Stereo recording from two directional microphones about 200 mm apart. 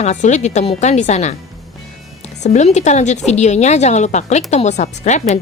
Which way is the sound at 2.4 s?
35° left (ahead or behind).